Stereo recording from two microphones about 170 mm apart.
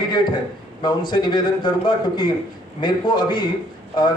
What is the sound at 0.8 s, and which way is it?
Speech, 25° left (ahead or behind).